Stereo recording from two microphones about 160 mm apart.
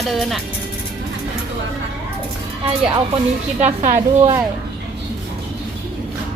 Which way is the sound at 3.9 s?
20° right (ahead or behind).